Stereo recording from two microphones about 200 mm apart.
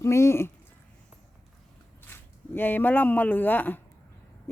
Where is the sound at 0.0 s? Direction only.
15° left (ahead or behind).